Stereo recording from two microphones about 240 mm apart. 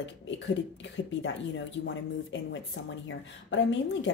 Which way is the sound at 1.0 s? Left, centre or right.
Left.